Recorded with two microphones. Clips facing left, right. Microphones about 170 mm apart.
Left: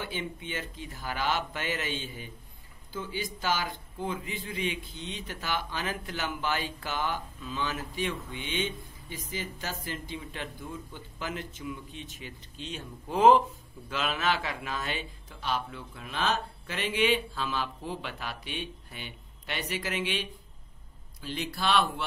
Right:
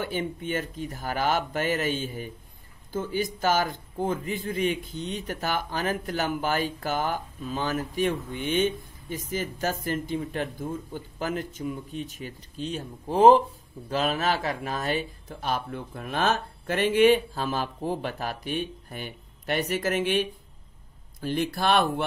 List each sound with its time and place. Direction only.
0.0 s a man's voice: 45° right (ahead or behind)